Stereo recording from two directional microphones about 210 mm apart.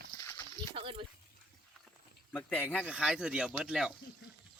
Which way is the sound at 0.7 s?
25° right (ahead or behind).